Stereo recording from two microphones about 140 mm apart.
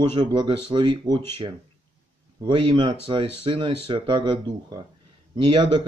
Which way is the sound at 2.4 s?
35° right (ahead or behind).